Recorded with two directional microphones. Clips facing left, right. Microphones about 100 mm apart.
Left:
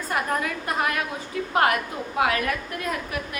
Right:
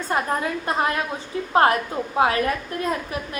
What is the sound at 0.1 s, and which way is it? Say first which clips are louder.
A woman's voice: right 2 dB; 30° right (ahead or behind).